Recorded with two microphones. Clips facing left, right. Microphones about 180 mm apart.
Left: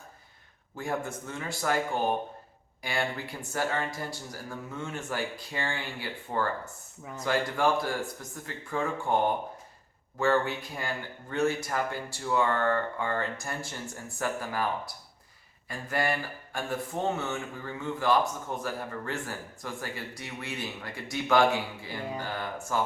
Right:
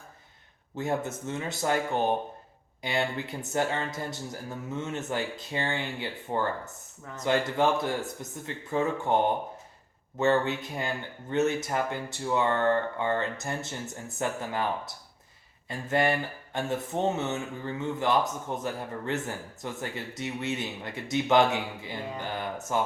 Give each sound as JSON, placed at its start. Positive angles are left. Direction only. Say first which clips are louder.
{"t": 0.8, "sound": "speech", "louder": "right 3 dB", "side_deg": -20}
{"t": 10.2, "sound": "speech", "louder": "right 2 dB", "side_deg": -20}